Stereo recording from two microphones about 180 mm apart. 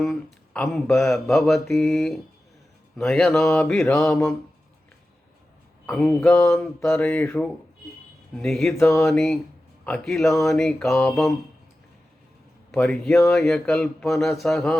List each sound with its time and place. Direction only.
0.0 s mantra: centre (ahead or behind)
5.8 s mantra: 5° left (ahead or behind)
12.7 s mantra: 5° left (ahead or behind)